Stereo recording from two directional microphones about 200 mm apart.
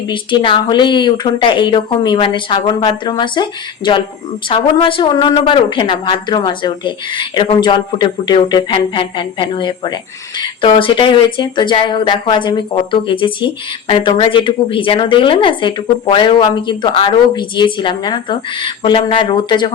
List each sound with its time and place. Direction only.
0.1 s speech: 25° left (ahead or behind)